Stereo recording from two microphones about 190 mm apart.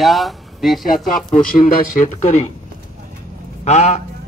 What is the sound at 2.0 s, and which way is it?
Speech, 35° left (ahead or behind).